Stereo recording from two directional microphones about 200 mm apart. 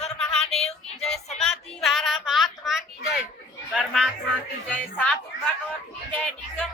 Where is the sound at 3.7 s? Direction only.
Centre (ahead or behind).